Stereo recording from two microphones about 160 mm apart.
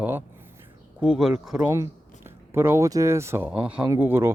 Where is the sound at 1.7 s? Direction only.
15° right (ahead or behind).